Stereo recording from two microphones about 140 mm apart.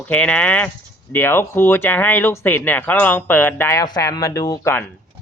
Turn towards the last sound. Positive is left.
turn(degrees=20)  # may be behind; listen again after turning